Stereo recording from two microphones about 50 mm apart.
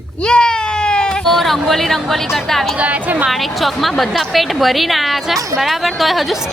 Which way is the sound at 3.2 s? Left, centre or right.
Centre.